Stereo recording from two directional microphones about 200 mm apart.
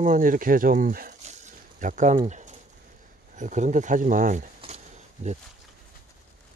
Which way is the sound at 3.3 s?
40° right (ahead or behind).